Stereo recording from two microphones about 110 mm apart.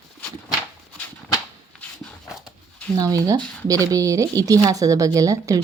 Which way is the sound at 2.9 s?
30° right (ahead or behind).